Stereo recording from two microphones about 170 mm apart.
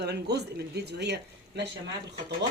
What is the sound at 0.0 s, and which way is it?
Speech, 75° right (ahead or behind).